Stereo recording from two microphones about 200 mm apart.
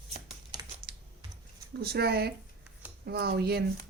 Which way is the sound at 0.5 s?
20° right (ahead or behind).